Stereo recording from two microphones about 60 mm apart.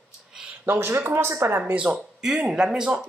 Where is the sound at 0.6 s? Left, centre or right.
Right.